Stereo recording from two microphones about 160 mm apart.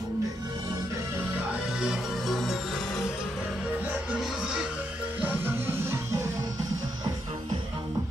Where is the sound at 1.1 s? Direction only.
5° right (ahead or behind).